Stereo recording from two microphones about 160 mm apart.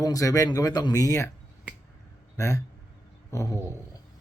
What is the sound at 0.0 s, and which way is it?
Speech, 20° left (ahead or behind).